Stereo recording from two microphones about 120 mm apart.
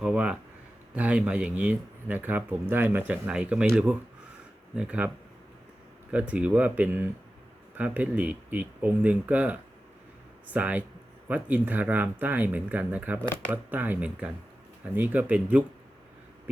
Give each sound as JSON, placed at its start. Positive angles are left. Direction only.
{"t": 0.0, "sound": "speech", "side_deg": -10}